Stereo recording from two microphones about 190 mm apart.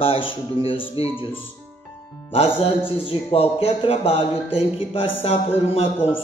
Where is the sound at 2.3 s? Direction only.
30° left (ahead or behind).